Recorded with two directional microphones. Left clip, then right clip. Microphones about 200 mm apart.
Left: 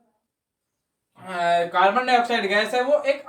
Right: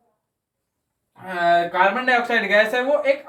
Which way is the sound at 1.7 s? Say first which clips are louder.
Even; 10° right (ahead or behind).